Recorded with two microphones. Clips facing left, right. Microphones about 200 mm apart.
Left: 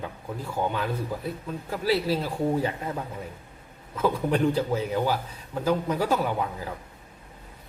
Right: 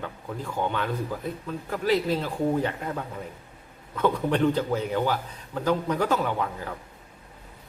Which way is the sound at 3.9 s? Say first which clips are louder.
Right 1 dB; 5° left (ahead or behind).